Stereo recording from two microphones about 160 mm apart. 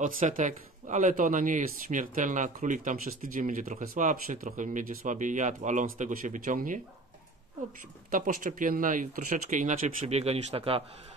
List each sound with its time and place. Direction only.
0.0 s speech: 55° right (ahead or behind)
8.1 s speech: 55° right (ahead or behind); by 10.8 s 40° right (ahead or behind)